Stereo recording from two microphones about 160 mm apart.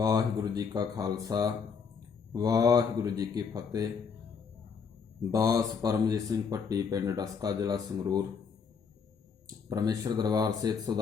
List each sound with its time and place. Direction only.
0.0 s speech: 20° right (ahead or behind)
5.3 s speech: 20° right (ahead or behind)
9.6 s speech: 25° right (ahead or behind)